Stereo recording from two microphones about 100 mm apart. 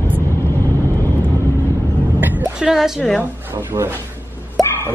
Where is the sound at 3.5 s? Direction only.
25° right (ahead or behind).